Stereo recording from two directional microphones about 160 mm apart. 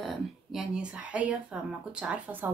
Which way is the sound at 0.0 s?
Centre (ahead or behind).